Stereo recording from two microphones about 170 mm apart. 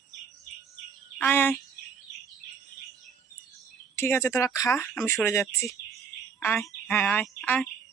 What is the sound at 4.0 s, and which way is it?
Speech, 15° left (ahead or behind).